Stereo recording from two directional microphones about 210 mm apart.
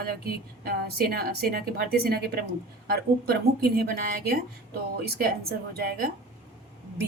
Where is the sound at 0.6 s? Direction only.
45° right (ahead or behind).